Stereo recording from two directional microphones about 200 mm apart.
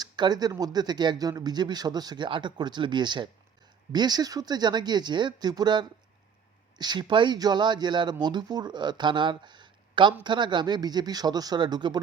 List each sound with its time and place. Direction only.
0.0 s speech: 20° right (ahead or behind)